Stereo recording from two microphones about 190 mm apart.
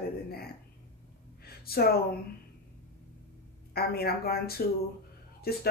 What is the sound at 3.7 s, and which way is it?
Speech, 55° left (ahead or behind).